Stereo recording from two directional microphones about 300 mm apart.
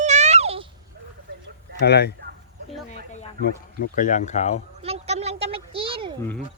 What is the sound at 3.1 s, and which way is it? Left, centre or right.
Speech, left.